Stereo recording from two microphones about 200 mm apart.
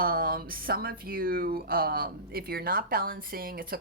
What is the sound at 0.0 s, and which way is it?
Speech, 45° right (ahead or behind).